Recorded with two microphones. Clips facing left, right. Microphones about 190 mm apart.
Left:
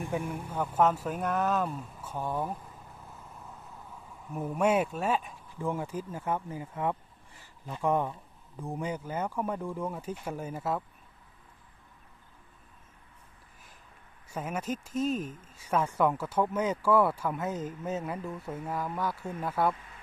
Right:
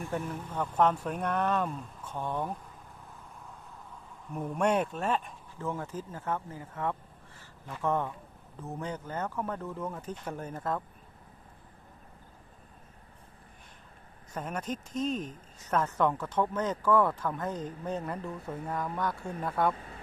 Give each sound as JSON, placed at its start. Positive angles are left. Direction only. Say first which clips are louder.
{"t": 0.1, "sound": "speech", "louder": "left 1 dB", "side_deg": 10}
{"t": 4.3, "sound": "speech", "louder": "left 1 dB", "side_deg": 5}
{"t": 7.3, "sound": "a sound", "louder": "left 2 dB", "side_deg": 15}
{"t": 8.6, "sound": "speech", "louder": "left 3 dB", "side_deg": 10}
{"t": 14.3, "sound": "speech", "louder": "left 2 dB", "side_deg": 5}
{"t": 19.7, "sound": "vehicle", "louder": "right 6 dB", "side_deg": -35}